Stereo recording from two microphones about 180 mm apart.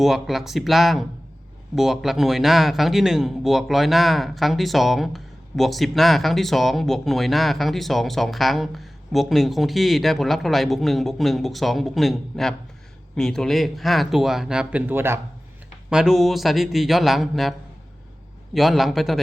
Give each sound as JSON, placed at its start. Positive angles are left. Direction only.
{"t": 0.0, "sound": "a man's voice", "side_deg": 0}
{"t": 18.5, "sound": "a man's voice", "side_deg": 0}